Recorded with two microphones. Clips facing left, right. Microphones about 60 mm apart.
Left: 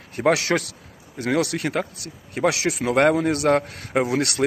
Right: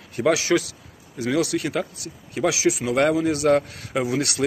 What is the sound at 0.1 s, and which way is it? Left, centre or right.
A man's voice, left.